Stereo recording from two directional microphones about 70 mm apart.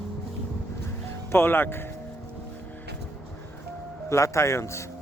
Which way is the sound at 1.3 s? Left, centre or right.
Left.